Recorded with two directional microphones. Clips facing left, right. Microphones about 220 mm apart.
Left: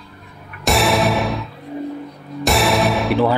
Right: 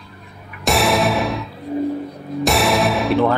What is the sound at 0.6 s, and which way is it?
Music, centre (ahead or behind).